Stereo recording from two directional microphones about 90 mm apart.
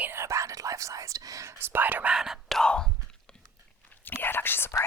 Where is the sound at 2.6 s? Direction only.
10° left (ahead or behind).